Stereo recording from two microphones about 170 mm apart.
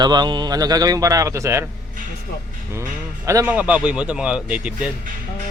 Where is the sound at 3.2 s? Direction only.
15° right (ahead or behind).